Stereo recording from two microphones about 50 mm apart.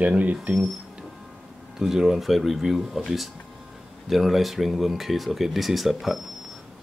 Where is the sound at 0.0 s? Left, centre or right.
Right.